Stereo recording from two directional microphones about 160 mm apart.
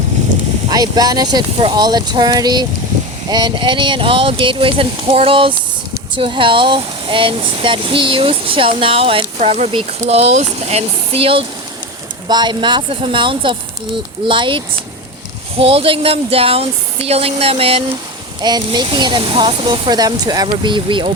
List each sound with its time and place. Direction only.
0.7 s speech: 25° right (ahead or behind)
18.4 s speech: 25° right (ahead or behind)